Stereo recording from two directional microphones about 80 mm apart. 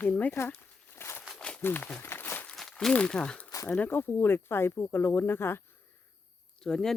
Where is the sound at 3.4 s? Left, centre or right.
Left.